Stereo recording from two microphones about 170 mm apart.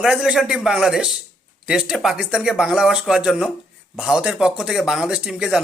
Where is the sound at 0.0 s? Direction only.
5° right (ahead or behind).